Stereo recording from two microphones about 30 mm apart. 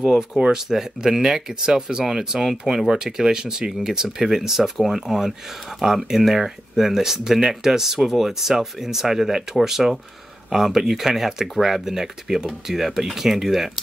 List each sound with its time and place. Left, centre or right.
0.0 s speech: centre